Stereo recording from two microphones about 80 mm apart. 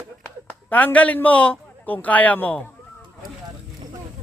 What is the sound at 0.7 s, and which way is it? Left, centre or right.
Speech, centre.